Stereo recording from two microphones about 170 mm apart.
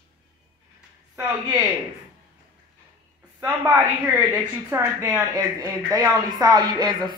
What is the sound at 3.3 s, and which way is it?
A woman's voice, 15° right (ahead or behind).